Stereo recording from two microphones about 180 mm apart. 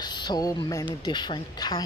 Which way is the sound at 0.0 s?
25° left (ahead or behind).